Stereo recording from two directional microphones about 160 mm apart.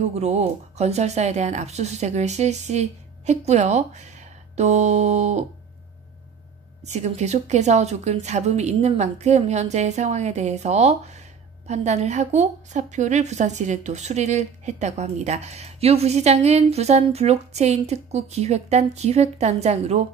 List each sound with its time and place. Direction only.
0.1 s a woman's voice: 45° right (ahead or behind)
6.8 s a woman's voice: 45° right (ahead or behind)